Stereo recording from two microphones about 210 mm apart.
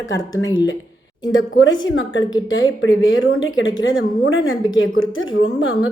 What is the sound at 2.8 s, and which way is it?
A woman's voice, 65° left (ahead or behind).